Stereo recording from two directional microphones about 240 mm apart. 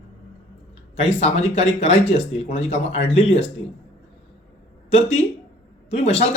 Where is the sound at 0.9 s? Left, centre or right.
Left.